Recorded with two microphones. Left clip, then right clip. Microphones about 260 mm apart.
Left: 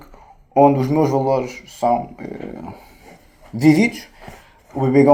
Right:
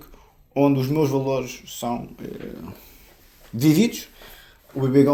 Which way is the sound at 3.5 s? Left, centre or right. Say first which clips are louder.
Left 4 dB; right.